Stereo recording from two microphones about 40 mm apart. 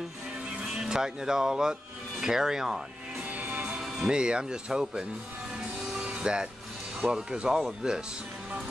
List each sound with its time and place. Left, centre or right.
0.6 s speech: right
3.3 s music: right
3.9 s speech: centre
6.2 s speech: right